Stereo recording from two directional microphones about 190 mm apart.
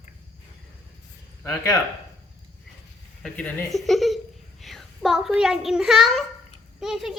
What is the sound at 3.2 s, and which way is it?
A child's voice, 5° left (ahead or behind).